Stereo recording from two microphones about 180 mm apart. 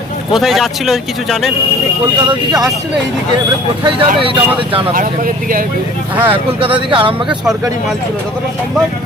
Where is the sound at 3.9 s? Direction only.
30° right (ahead or behind).